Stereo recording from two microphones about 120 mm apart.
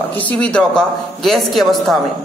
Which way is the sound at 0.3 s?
10° left (ahead or behind).